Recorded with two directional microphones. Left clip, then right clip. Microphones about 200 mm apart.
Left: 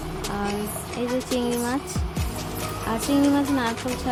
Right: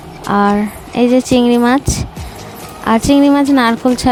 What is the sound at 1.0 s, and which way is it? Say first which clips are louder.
Speech: right 15 dB; 50° right (ahead or behind).